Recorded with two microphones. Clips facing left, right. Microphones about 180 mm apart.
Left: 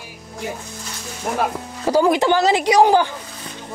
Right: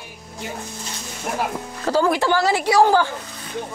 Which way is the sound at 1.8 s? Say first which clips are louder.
Left 3 dB; 15° left (ahead or behind).